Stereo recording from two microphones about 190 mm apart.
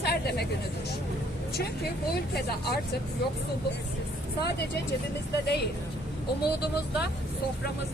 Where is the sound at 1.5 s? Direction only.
55° left (ahead or behind).